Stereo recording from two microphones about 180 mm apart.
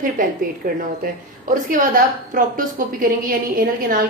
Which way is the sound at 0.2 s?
45° right (ahead or behind).